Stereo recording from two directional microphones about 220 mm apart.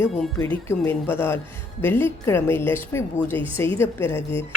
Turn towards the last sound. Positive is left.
turn(degrees=10)  # may be behind; listen again after turning